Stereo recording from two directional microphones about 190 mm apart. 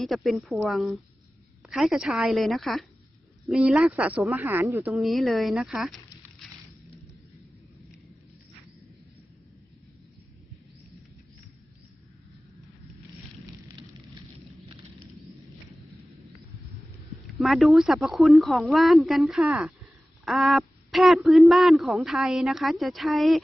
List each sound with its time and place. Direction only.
0.0 s speech: centre (ahead or behind)
4.9 s speech: centre (ahead or behind)
13.5 s fire: 15° right (ahead or behind)
17.4 s speech: centre (ahead or behind)